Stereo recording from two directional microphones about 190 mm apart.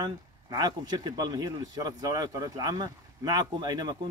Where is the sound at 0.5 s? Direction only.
20° right (ahead or behind).